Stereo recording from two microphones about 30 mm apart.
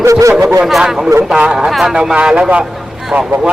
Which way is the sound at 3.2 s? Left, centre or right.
Right.